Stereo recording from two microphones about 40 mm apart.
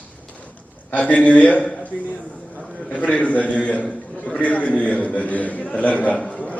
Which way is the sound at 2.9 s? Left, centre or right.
Left.